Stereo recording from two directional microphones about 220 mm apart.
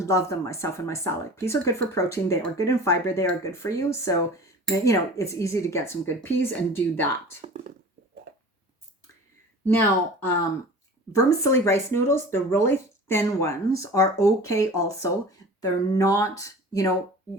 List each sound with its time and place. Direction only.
0.0 s speech: 15° left (ahead or behind)
11.1 s speech: 15° left (ahead or behind)